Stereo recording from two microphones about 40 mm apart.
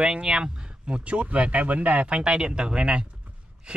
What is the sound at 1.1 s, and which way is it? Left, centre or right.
Speech, right.